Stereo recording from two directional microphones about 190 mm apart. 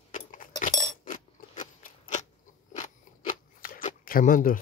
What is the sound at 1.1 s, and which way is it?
Scissors, 45° left (ahead or behind).